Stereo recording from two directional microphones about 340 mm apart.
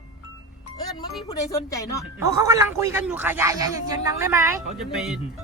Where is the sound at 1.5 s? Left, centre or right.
Centre.